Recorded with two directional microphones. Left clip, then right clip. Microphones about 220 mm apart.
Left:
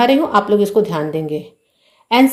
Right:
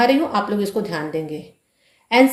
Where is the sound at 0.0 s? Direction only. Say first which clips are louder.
Left 4 dB; 35° left (ahead or behind).